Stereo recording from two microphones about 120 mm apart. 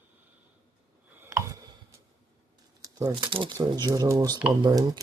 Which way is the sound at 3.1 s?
45° right (ahead or behind).